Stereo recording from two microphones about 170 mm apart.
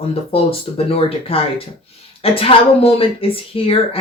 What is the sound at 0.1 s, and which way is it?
Speech, 35° left (ahead or behind).